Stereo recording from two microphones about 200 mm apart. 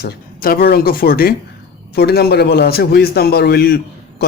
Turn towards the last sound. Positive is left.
turn(degrees=55)  # may be behind; listen again after turning